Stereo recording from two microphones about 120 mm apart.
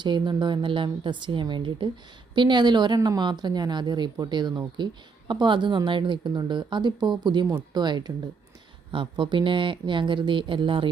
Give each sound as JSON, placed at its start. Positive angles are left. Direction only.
{"t": 0.0, "sound": "a woman's voice", "side_deg": -40}